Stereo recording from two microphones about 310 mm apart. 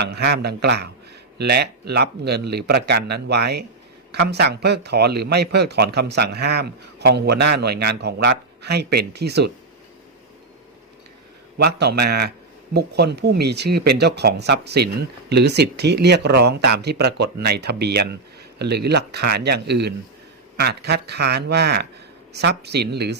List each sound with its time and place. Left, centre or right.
0.0 s speech: right
11.5 s speech: right